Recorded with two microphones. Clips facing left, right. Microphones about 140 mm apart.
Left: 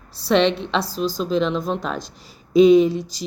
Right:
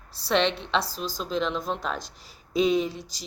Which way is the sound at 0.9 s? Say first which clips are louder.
Left 9 dB; 30° left (ahead or behind).